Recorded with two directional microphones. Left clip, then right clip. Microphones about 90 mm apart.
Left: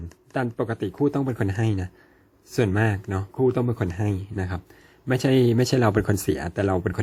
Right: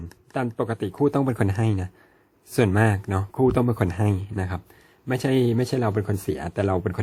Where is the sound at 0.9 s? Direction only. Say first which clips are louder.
Right 3 dB; 35° right (ahead or behind).